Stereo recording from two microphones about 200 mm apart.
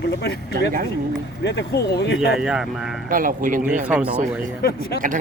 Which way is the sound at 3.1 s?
45° right (ahead or behind).